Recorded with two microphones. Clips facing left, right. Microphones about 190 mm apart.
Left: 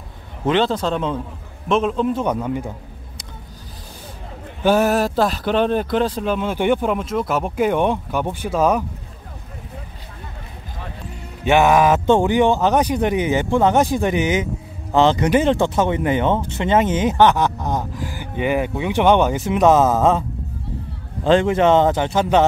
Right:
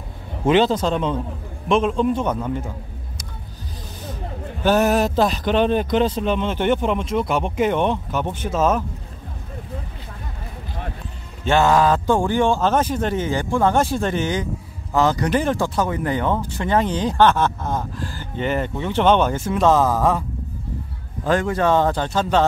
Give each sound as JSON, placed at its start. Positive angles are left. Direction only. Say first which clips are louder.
{"t": 0.5, "sound": "speech", "louder": "right 2 dB", "side_deg": -5}
{"t": 4.6, "sound": "speech", "louder": "left 1 dB", "side_deg": 5}
{"t": 11.4, "sound": "speech", "louder": "left 2 dB", "side_deg": 15}